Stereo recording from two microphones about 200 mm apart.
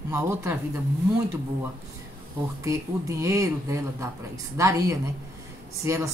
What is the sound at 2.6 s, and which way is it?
Speech, 15° right (ahead or behind).